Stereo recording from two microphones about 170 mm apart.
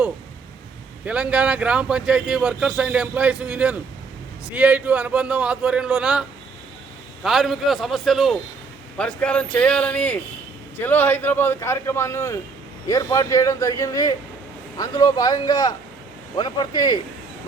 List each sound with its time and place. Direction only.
1.0 s a man's voice: 5° right (ahead or behind); by 17.0 s 25° left (ahead or behind)